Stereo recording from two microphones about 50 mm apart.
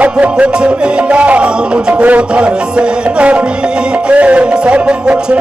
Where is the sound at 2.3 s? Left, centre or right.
Centre.